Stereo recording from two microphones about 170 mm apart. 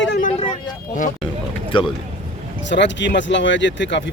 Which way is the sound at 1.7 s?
30° left (ahead or behind).